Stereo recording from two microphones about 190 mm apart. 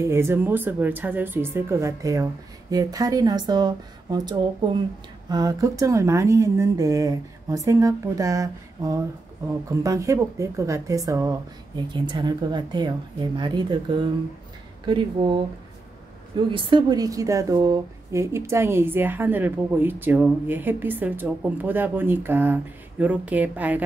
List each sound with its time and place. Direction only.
0.0 s a woman's voice: 15° right (ahead or behind)
16.5 s a woman's voice: 25° right (ahead or behind); by 23.8 s 10° right (ahead or behind)